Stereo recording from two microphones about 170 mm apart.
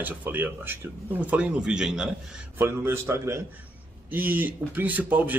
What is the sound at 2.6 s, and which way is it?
Speech, 15° right (ahead or behind).